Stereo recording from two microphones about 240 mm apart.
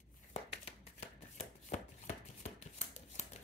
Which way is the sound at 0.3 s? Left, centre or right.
Left.